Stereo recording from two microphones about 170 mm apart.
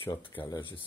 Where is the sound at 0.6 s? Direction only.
30° left (ahead or behind).